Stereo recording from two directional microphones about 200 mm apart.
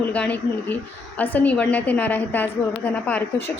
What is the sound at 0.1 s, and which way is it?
A woman's voice, 5° left (ahead or behind).